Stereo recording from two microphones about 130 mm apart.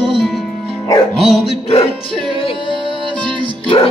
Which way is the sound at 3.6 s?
50° left (ahead or behind).